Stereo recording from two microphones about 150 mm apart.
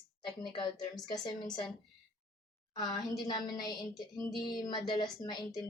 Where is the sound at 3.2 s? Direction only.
25° left (ahead or behind).